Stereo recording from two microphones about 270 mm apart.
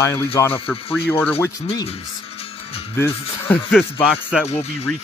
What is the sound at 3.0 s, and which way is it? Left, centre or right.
Speech, centre.